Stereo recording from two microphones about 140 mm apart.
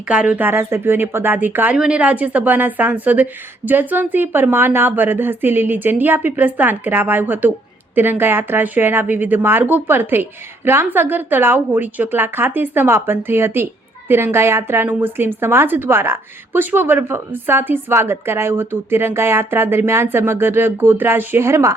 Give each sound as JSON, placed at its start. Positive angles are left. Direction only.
{"t": 0.1, "sound": "a woman's voice", "side_deg": -10}